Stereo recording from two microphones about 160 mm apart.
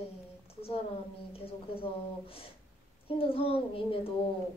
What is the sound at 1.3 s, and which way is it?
A woman's voice, 35° left (ahead or behind).